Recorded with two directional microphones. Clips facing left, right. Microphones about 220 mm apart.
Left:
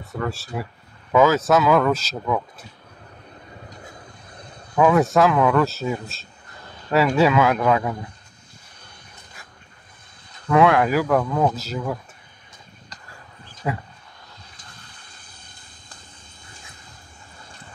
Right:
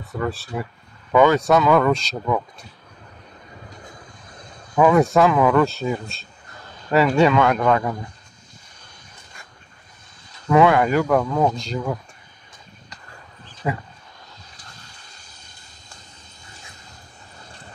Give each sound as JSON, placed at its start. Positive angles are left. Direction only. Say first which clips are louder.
{"t": 0.0, "sound": "speech", "louder": "right 2 dB", "side_deg": 0}
{"t": 4.7, "sound": "speech", "louder": "right 1 dB", "side_deg": 0}
{"t": 10.5, "sound": "speech", "louder": "right 1 dB", "side_deg": 0}
{"t": 13.6, "sound": "speech", "louder": "right 1 dB", "side_deg": 0}
{"t": 14.7, "sound": "vehicle", "louder": "right 1 dB", "side_deg": 55}